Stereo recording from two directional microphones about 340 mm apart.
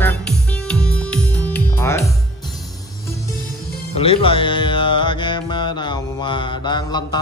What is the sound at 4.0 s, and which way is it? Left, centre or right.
Music, centre.